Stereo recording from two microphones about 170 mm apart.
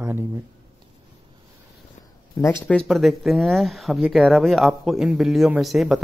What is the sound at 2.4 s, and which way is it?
Speech, 15° left (ahead or behind).